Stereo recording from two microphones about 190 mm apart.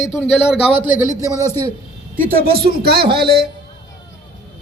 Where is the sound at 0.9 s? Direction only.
15° right (ahead or behind).